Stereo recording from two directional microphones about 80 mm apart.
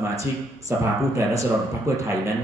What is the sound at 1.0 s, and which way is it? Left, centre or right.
Speech, right.